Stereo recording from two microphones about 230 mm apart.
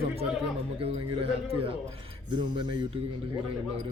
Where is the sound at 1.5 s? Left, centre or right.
Right.